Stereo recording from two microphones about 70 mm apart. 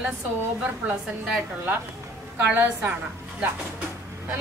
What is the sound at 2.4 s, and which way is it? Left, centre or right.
Speech, right.